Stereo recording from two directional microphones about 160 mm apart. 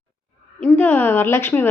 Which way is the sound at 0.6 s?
10° left (ahead or behind).